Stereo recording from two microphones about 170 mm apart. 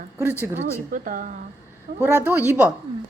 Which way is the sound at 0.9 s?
50° right (ahead or behind).